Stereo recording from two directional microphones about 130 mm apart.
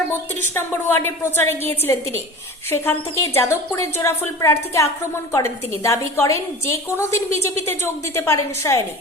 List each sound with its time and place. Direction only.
0.5 s a woman's voice: 20° left (ahead or behind)